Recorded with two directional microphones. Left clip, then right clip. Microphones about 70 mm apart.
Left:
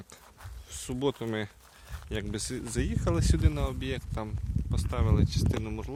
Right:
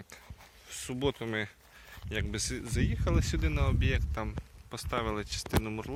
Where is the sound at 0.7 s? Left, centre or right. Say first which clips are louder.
Left 2 dB; left.